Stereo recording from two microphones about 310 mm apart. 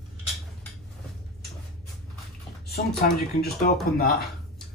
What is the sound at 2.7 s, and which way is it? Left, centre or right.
Speech, left.